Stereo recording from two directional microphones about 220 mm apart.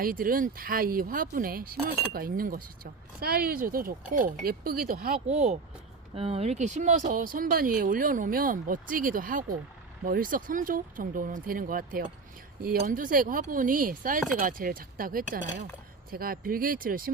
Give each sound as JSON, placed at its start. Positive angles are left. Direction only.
{"t": 0.0, "sound": "speech", "side_deg": -40}
{"t": 5.3, "sound": "speech", "side_deg": -30}